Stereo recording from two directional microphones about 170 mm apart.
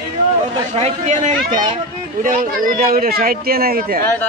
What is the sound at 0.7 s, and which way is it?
Speech, 40° right (ahead or behind).